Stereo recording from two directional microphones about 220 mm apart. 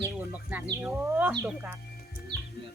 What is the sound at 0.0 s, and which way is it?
Speech, 10° right (ahead or behind).